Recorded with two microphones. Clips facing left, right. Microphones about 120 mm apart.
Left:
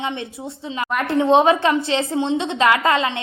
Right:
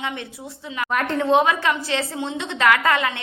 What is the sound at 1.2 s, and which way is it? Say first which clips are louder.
A woman's voice: left 5 dB; 20° left (ahead or behind).